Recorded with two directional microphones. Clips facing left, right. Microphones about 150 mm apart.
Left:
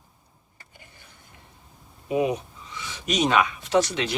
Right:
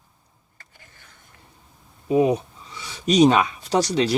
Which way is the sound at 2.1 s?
35° right (ahead or behind).